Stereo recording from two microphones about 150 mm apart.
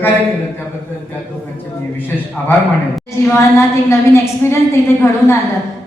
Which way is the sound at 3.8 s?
20° left (ahead or behind).